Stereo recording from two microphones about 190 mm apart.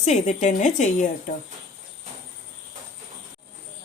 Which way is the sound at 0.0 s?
40° left (ahead or behind).